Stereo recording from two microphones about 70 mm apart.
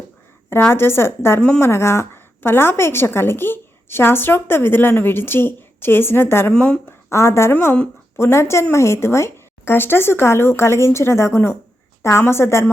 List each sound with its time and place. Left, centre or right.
0.7 s a woman's voice: left
1.4 s speech: centre
1.6 s a woman's voice: left
6.5 s speech: centre
6.8 s a woman's voice: left